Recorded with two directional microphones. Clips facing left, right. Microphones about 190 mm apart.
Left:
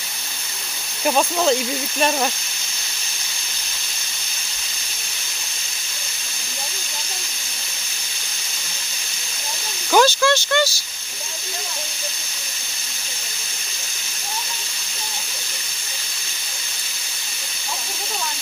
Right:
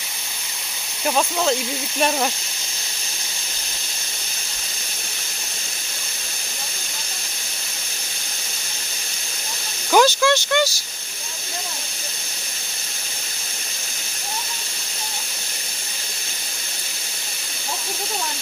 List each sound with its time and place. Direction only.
1.0 s speech: 5° left (ahead or behind)
2.0 s speech: 5° right (ahead or behind)
10.0 s a sound: 15° right (ahead or behind)